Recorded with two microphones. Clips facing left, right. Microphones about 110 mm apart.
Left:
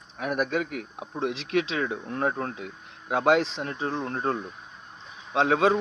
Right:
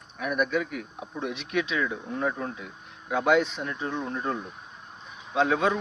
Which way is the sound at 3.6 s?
85° left.